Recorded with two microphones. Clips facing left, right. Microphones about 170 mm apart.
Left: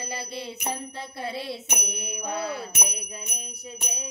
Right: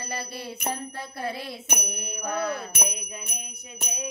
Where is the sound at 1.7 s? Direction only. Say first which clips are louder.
Even; 20° left (ahead or behind).